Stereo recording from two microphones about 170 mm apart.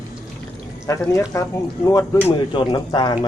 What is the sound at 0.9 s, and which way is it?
Speech, 15° left (ahead or behind).